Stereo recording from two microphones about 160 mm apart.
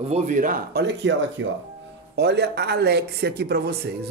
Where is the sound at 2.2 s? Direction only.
90° right.